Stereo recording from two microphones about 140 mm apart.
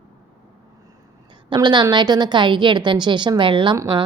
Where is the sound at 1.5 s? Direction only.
30° right (ahead or behind).